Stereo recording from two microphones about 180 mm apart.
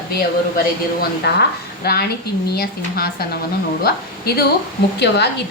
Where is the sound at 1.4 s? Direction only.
60° left (ahead or behind).